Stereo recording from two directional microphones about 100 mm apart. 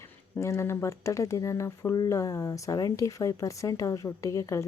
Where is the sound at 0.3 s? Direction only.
30° left (ahead or behind).